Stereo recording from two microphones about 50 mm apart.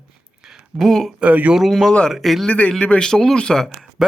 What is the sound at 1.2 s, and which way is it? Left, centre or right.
Speech, right.